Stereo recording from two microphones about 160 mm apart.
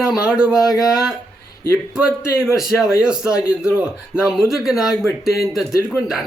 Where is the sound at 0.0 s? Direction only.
5° right (ahead or behind).